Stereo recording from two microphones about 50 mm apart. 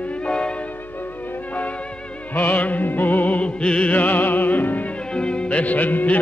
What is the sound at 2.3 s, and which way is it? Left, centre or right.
Music, left.